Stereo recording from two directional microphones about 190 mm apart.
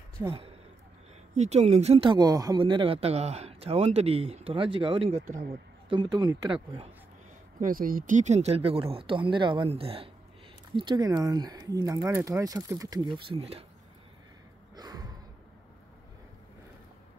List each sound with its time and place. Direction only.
0.2 s speech: 15° right (ahead or behind)
1.3 s speech: 35° right (ahead or behind)
7.6 s speech: 45° right (ahead or behind); by 13.7 s 30° right (ahead or behind)
14.8 s gasp: 20° right (ahead or behind)